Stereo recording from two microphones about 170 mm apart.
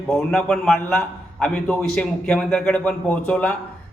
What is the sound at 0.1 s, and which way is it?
A man's voice, 5° left (ahead or behind).